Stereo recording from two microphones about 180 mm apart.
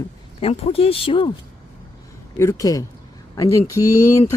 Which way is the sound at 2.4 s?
15° left (ahead or behind).